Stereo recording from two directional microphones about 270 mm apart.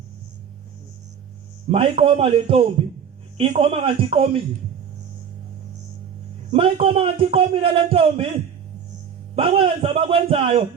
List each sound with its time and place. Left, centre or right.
1.7 s a man's voice: right
6.5 s a man's voice: right
9.3 s a man's voice: right